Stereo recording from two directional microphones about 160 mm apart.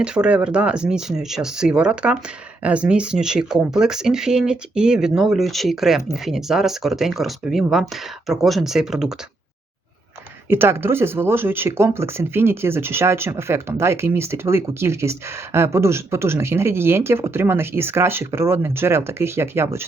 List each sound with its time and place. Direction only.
0.0 s speech: 5° right (ahead or behind)
10.5 s speech: 15° right (ahead or behind)